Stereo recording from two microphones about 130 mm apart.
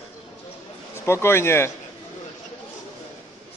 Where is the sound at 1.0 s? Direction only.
20° left (ahead or behind).